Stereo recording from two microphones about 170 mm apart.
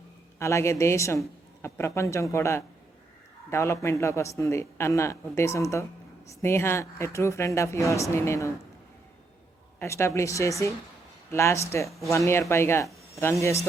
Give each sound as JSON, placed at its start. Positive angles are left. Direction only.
{"t": 0.3, "sound": "speech", "side_deg": 15}
{"t": 9.7, "sound": "speech", "side_deg": 15}
{"t": 11.9, "sound": "speech", "side_deg": 0}
{"t": 12.1, "sound": "speech", "side_deg": 15}